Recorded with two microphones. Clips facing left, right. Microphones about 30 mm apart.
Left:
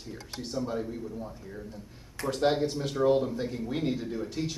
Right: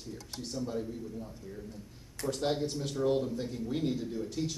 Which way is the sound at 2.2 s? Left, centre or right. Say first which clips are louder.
Left 5 dB; centre.